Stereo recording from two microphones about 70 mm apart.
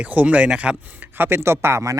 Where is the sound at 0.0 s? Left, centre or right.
Right.